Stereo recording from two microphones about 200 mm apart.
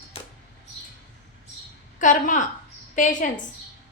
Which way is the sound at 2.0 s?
40° left (ahead or behind).